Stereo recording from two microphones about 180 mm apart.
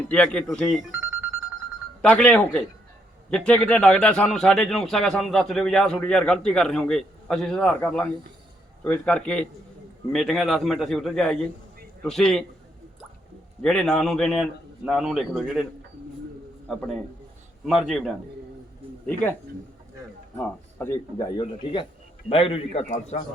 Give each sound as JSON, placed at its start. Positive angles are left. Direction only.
{"t": 0.1, "sound": "a man's voice", "side_deg": 5}
{"t": 2.0, "sound": "a man's voice", "side_deg": 5}
{"t": 13.6, "sound": "a man's voice", "side_deg": 5}
{"t": 16.6, "sound": "a man's voice", "side_deg": 0}
{"t": 19.0, "sound": "a man's voice", "side_deg": 10}